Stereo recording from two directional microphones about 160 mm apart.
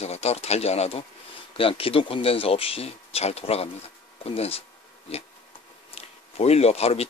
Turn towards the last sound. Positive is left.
turn(degrees=40)  # may be behind; listen again after turning